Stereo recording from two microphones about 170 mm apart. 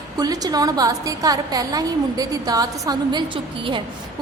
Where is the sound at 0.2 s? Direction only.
20° right (ahead or behind).